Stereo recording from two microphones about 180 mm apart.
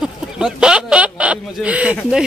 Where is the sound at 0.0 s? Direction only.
5° right (ahead or behind).